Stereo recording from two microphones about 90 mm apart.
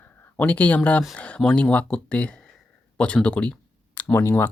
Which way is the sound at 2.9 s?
15° left (ahead or behind).